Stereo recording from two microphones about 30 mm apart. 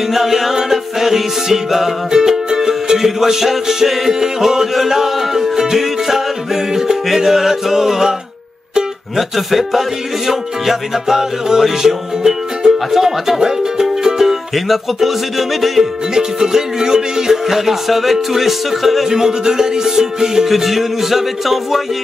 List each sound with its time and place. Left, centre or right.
0.1 s music: centre
7.2 s speech: centre
9.1 s speech: centre
14.0 s music: centre
16.2 s music: centre
17.5 s music: centre
19.0 s music: centre
20.4 s speech: centre